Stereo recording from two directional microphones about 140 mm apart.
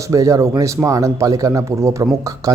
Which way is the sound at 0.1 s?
25° right (ahead or behind).